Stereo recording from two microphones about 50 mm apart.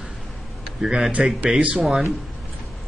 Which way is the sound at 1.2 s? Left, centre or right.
Centre.